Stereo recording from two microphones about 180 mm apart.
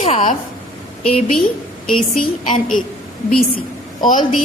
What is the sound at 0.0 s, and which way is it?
Speech, 40° left (ahead or behind).